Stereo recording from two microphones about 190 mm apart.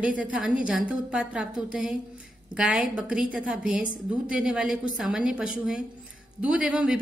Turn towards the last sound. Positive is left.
turn(degrees=-5)  # may be behind; listen again after turning